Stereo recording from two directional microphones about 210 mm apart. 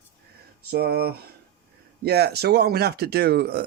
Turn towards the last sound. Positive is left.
turn(degrees=-50)  # may be behind; listen again after turning